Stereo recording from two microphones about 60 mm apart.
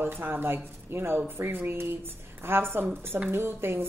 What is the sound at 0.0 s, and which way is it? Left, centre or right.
A woman's voice, right.